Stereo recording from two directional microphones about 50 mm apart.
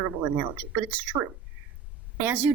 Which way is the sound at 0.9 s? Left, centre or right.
Right.